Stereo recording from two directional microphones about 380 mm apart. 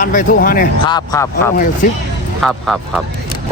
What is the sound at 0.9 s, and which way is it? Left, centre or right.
Speech, centre.